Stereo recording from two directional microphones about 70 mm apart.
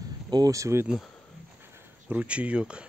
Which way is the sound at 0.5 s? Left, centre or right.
Right.